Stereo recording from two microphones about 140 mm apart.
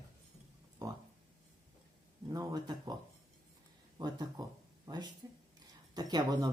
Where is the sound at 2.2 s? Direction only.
30° right (ahead or behind).